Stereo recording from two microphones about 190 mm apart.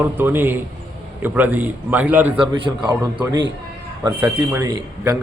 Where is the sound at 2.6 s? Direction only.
25° right (ahead or behind).